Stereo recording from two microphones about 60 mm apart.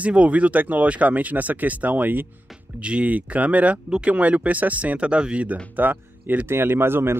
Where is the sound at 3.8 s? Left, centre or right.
Centre.